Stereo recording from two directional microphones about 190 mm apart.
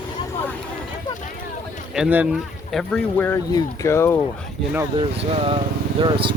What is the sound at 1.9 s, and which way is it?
Speech, 5° right (ahead or behind).